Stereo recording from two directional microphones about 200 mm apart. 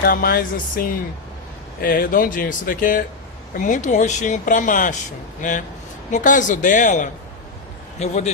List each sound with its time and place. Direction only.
0.0 s speech: 45° left (ahead or behind)
6.1 s speech: 40° left (ahead or behind)